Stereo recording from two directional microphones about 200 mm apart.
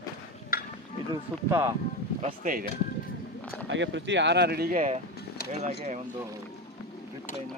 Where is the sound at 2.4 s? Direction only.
45° right (ahead or behind).